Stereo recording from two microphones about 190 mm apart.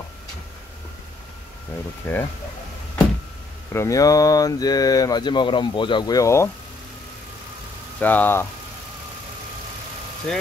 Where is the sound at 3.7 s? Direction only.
15° left (ahead or behind).